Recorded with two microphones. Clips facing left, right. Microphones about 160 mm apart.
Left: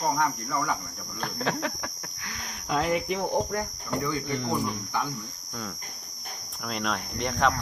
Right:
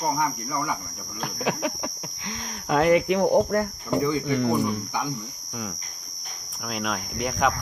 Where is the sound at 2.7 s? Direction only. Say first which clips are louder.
Right 7 dB; 70° right (ahead or behind).